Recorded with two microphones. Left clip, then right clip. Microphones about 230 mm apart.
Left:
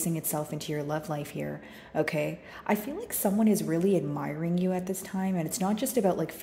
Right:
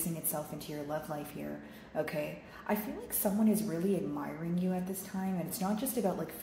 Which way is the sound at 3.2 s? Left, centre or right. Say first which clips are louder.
Left 5 dB; left.